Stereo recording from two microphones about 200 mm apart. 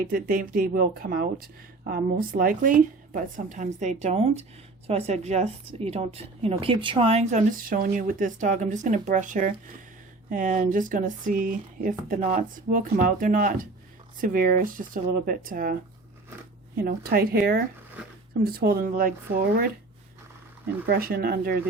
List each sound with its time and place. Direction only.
0.1 s a woman's voice: 45° right (ahead or behind)
16.8 s speech: 50° right (ahead or behind)
20.8 s speech: 50° right (ahead or behind)